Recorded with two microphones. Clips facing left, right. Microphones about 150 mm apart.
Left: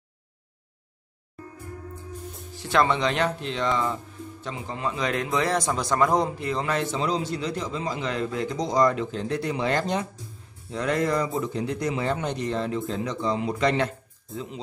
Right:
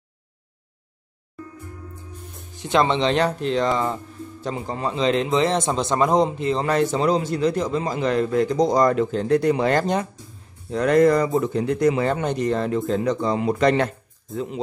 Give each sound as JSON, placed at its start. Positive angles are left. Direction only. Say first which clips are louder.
{"t": 2.5, "sound": "speech", "louder": "right 3 dB", "side_deg": -20}
{"t": 4.9, "sound": "speech", "louder": "right 7 dB", "side_deg": -25}
{"t": 6.6, "sound": "a man's voice", "louder": "right 7 dB", "side_deg": -40}